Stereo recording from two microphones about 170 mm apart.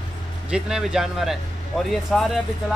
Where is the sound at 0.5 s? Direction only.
5° right (ahead or behind).